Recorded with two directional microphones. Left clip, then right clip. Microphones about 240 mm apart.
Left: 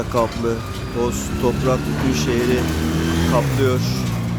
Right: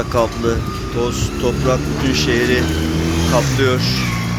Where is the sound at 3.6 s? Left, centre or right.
Centre.